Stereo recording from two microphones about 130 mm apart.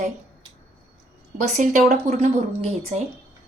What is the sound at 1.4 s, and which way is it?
Speech, 75° right (ahead or behind).